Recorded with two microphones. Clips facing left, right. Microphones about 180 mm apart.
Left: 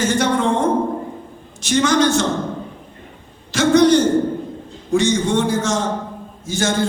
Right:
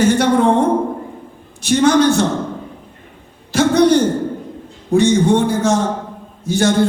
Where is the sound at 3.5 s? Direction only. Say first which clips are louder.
Right 1 dB; 55° right (ahead or behind).